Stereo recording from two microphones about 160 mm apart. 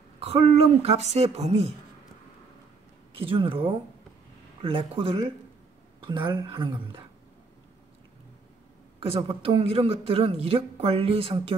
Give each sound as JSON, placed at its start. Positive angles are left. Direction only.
{"t": 0.2, "sound": "a man's voice", "side_deg": -40}
{"t": 3.2, "sound": "a man's voice", "side_deg": -35}
{"t": 9.0, "sound": "a man's voice", "side_deg": -35}